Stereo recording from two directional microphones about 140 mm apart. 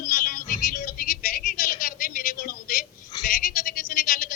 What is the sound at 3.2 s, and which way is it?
Sheep, 75° left (ahead or behind).